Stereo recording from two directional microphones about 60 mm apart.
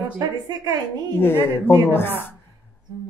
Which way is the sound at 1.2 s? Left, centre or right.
Left.